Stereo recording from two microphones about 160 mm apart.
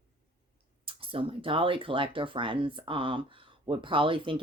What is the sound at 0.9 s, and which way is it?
Speech, 35° right (ahead or behind).